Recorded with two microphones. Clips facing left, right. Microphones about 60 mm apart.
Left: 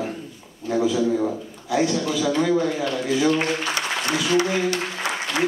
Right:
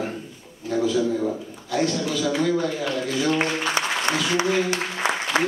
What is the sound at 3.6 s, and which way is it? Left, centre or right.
Music, right.